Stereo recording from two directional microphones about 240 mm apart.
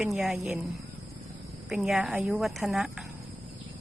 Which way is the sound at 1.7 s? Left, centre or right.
Centre.